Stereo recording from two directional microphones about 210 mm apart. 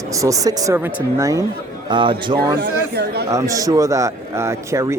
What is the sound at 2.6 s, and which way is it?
Speech, 50° right (ahead or behind).